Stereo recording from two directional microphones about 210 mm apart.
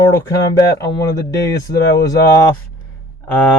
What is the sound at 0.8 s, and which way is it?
Speech, 15° left (ahead or behind).